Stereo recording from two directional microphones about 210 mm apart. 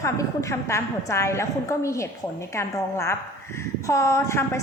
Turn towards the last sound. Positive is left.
turn(degrees=15)  # may be behind; listen again after turning